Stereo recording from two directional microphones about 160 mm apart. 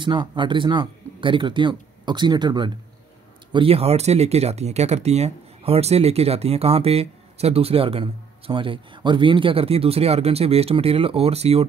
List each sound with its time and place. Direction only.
0.0 s speech: 30° right (ahead or behind)